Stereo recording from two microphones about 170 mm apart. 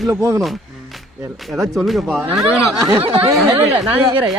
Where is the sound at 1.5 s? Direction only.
Centre (ahead or behind).